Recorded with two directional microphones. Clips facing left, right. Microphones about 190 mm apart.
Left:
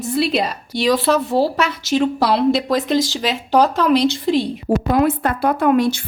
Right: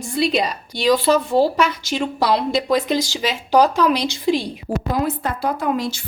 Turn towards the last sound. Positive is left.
turn(degrees=60)  # may be behind; listen again after turning